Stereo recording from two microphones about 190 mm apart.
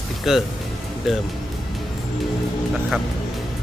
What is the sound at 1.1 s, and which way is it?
Speech, centre (ahead or behind).